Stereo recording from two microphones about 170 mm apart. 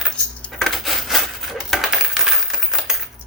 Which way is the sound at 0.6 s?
Centre (ahead or behind).